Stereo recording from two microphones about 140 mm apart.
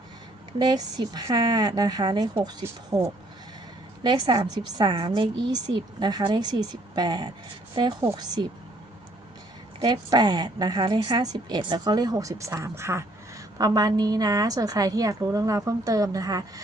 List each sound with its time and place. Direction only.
0.6 s a woman's voice: 30° right (ahead or behind)
9.8 s a woman's voice: 30° right (ahead or behind)